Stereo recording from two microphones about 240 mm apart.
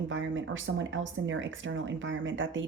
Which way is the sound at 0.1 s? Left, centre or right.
Right.